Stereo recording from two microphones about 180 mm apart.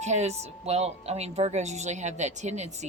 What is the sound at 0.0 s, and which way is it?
Speech, 40° right (ahead or behind).